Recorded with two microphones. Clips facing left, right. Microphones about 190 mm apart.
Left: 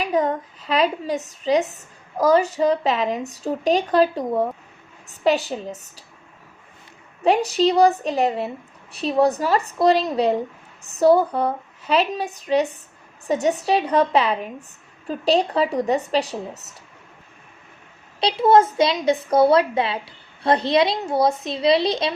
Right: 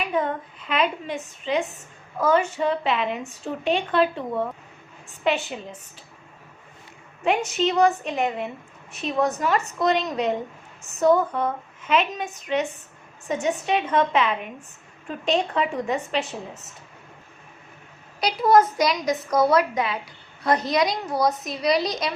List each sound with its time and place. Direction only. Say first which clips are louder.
0.0 s a woman's voice: left 4 dB; 40° left (ahead or behind)
7.3 s a woman's voice: left 5 dB; 35° left (ahead or behind)
18.2 s a woman's voice: left 2 dB; 25° left (ahead or behind)